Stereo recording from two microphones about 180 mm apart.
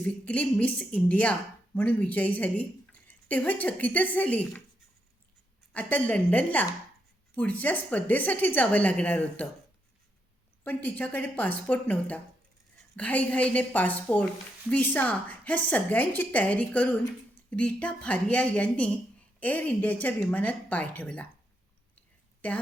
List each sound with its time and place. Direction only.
0.0 s speech: 10° left (ahead or behind)
5.7 s speech: 10° left (ahead or behind)
10.6 s speech: 10° left (ahead or behind)
22.4 s speech: 10° left (ahead or behind)